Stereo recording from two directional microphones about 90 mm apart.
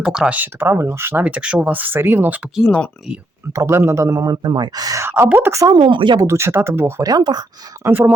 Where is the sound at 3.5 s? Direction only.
35° right (ahead or behind).